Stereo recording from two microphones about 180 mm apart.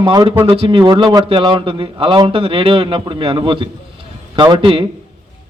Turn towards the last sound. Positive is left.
turn(degrees=-30)  # may be behind; listen again after turning